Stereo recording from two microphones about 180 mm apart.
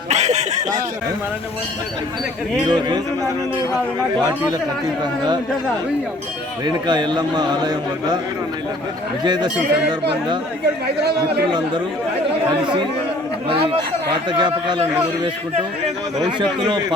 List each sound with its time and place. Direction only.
0.1 s speech: 40° right (ahead or behind)
2.6 s a man's voice: 25° right (ahead or behind)
6.7 s a man's voice: 25° right (ahead or behind)
9.2 s a man's voice: 25° right (ahead or behind)
9.6 s speech: 65° right (ahead or behind)
12.6 s a man's voice: 25° right (ahead or behind)
14.3 s a man's voice: 25° right (ahead or behind)
16.4 s a man's voice: 25° right (ahead or behind)